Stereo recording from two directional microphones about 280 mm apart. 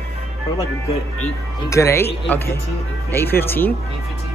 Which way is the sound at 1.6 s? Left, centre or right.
Centre.